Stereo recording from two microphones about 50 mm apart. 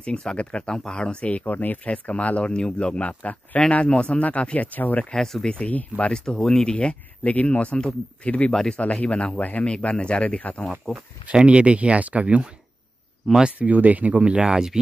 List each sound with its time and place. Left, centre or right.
0.0 s speech: centre
1.4 s speech: left
1.9 s speech: left
4.7 s speech: left
5.1 s speech: centre
5.5 s speech: left
6.1 s speech: centre
11.3 s speech: right
14.3 s speech: centre